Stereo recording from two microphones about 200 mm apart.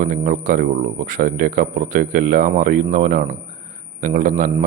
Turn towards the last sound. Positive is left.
turn(degrees=-40)  # may be behind; listen again after turning